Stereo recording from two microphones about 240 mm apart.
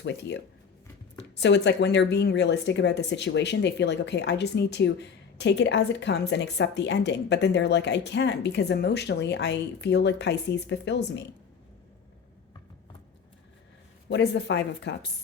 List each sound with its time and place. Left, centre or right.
0.0 s speech: left
14.1 s speech: left